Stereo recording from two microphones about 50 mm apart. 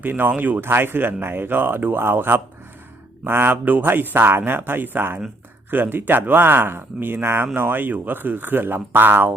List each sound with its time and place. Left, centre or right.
0.0 s speech: right
0.7 s speech: right